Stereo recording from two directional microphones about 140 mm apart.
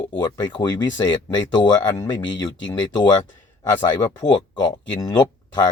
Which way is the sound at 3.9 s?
30° left (ahead or behind).